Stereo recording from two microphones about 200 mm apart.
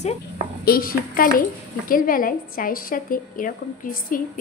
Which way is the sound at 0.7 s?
45° left (ahead or behind).